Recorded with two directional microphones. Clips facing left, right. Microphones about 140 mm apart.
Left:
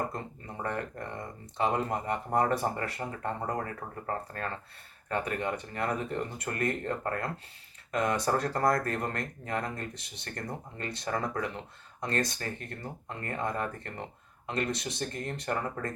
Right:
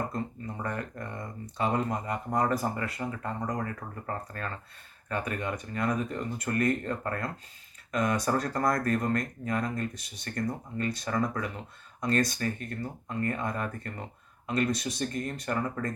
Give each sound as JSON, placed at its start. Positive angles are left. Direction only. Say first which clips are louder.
{"t": 0.1, "sound": "speech", "louder": "right 5 dB", "side_deg": 25}